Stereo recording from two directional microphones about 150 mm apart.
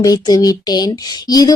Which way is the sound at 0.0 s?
25° left (ahead or behind).